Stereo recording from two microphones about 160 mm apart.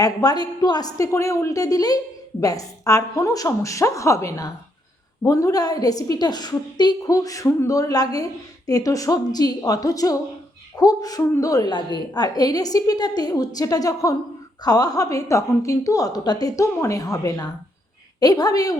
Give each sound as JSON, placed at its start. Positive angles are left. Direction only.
{"t": 0.0, "sound": "a woman's voice", "side_deg": 25}